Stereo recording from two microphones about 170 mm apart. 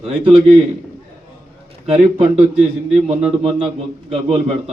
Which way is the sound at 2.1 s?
40° right (ahead or behind).